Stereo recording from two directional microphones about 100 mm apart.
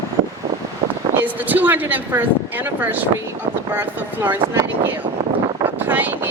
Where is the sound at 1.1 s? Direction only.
20° right (ahead or behind).